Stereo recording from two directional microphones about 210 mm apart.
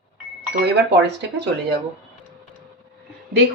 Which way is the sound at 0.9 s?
55° right (ahead or behind).